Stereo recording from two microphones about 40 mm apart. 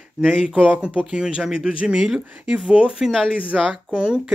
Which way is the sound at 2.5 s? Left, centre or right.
Right.